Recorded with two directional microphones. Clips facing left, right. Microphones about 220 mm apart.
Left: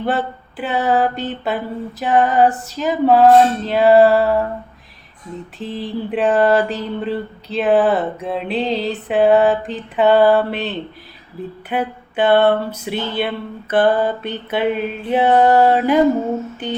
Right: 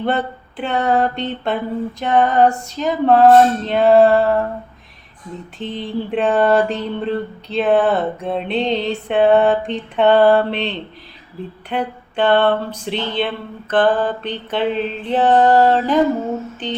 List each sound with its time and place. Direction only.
0.0 s mantra: 5° left (ahead or behind)
5.5 s mantra: centre (ahead or behind)
11.7 s a sound: 5° left (ahead or behind)